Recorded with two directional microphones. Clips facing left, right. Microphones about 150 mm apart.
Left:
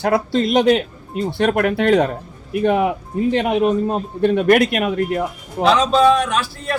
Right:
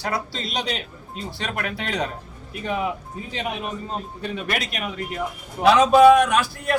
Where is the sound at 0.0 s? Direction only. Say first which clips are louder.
Left 11 dB; 55° left (ahead or behind).